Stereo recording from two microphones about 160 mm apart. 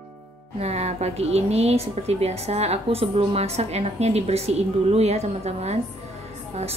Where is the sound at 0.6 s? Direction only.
40° right (ahead or behind).